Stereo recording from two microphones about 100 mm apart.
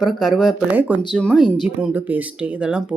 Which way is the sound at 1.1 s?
10° left (ahead or behind).